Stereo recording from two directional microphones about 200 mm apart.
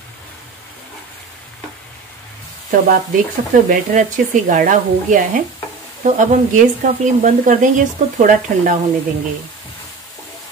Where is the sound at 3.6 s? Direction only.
40° right (ahead or behind).